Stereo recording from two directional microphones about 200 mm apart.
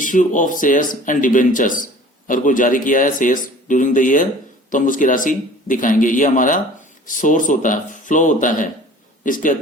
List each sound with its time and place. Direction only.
0.0 s speech: 40° left (ahead or behind)